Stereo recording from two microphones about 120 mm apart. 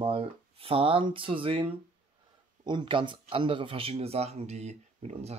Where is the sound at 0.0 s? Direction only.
50° right (ahead or behind).